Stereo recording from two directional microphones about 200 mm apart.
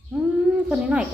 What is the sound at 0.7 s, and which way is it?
Speech, 5° right (ahead or behind).